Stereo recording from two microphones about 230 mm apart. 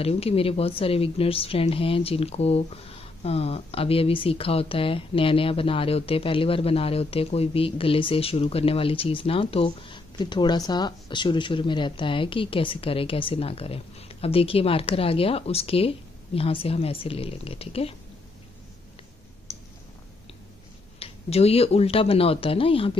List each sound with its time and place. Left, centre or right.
0.0 s speech: left
21.0 s speech: left